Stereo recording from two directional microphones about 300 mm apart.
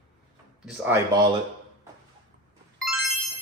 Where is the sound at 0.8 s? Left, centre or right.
Centre.